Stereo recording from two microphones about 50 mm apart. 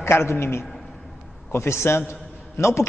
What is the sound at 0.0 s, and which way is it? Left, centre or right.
A man's voice, left.